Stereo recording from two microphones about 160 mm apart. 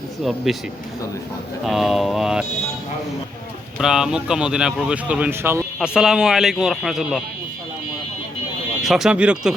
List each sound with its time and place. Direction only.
0.5 s speech: centre (ahead or behind)
1.6 s speech: centre (ahead or behind)
3.8 s speech: 5° right (ahead or behind)
8.8 s speech: centre (ahead or behind)